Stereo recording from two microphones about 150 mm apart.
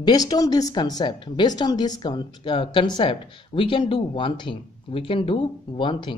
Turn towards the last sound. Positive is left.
turn(degrees=30)  # may be behind; listen again after turning